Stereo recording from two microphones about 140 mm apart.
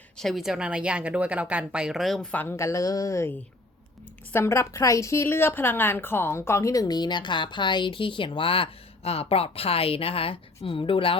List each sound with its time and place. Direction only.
0.2 s a woman's voice: centre (ahead or behind); by 11.2 s 40° left (ahead or behind)